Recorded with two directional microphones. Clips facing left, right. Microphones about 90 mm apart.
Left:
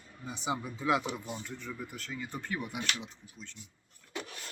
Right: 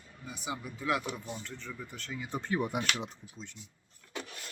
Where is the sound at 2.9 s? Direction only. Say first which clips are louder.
Right 3 dB; 45° right (ahead or behind).